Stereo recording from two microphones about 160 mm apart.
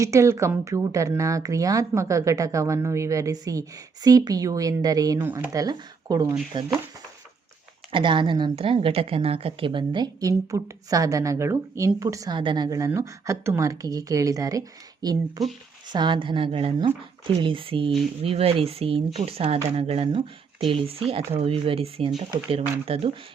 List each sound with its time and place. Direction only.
0.0 s a woman's voice: 20° right (ahead or behind)
7.9 s a woman's voice: 30° right (ahead or behind)